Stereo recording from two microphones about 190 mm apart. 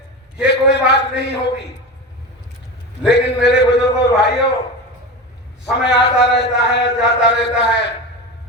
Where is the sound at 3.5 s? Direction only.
60° left (ahead or behind).